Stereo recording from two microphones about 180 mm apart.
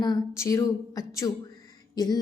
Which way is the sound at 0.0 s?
20° left (ahead or behind).